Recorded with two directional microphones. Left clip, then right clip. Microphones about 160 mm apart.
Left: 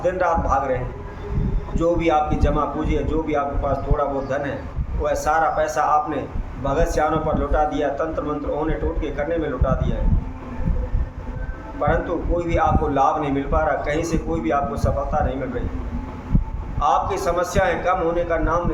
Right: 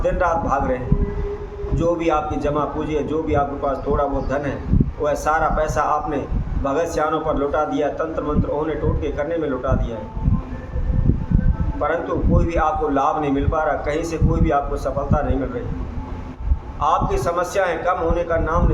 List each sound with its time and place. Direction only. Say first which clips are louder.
0.0 s a man's voice: right 1 dB; 10° right (ahead or behind)
1.8 s a man's voice: left 1 dB; 10° right (ahead or behind)
11.8 s a man's voice: even; 5° right (ahead or behind)
16.8 s a man's voice: even; 10° right (ahead or behind)